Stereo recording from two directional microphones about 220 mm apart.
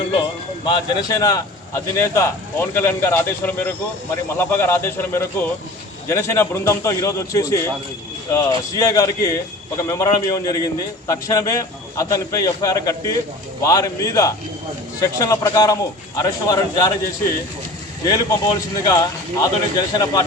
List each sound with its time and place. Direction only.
0.1 s speech: 20° left (ahead or behind)
18.0 s speech: 15° left (ahead or behind)